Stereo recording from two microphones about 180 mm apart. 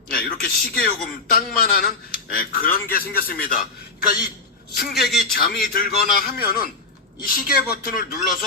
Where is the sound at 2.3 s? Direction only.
50° left (ahead or behind).